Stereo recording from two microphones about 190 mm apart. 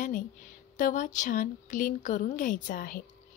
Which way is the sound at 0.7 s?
45° left (ahead or behind).